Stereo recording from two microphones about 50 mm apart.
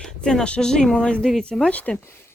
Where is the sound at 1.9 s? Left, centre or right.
Centre.